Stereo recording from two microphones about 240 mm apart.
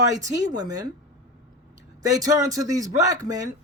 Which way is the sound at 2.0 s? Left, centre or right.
Centre.